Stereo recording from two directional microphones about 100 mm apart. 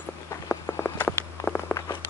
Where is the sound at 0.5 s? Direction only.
20° left (ahead or behind).